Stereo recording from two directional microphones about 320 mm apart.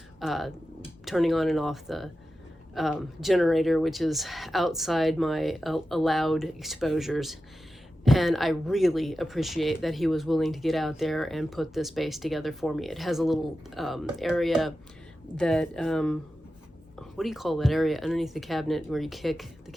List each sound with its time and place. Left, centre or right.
0.2 s speech: centre